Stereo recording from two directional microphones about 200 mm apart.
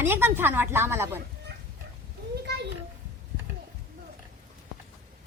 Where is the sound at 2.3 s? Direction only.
55° right (ahead or behind).